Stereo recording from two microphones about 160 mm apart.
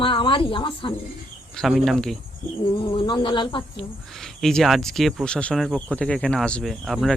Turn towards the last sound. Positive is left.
turn(degrees=0)  # may be behind; listen again after turning